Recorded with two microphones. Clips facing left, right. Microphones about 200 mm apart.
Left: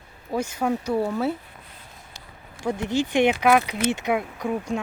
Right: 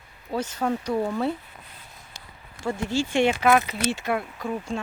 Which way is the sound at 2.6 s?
20° left (ahead or behind).